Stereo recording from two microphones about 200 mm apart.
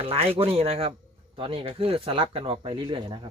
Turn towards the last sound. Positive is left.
turn(degrees=-25)  # may be behind; listen again after turning